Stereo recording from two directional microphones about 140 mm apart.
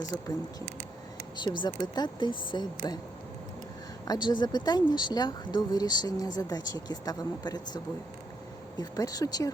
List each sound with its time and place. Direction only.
0.1 s speech: 25° left (ahead or behind)
1.4 s speech: 30° left (ahead or behind)
4.0 s speech: 30° left (ahead or behind)
8.8 s speech: 25° left (ahead or behind)